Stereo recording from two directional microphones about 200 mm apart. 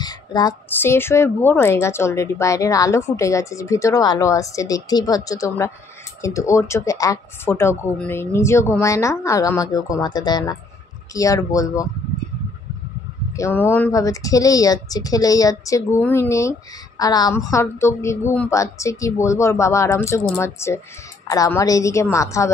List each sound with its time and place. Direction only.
0.0 s a woman's voice: 20° left (ahead or behind)
13.3 s a woman's voice: 15° left (ahead or behind)